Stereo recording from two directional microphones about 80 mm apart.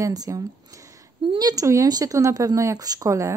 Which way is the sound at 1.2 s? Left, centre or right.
Right.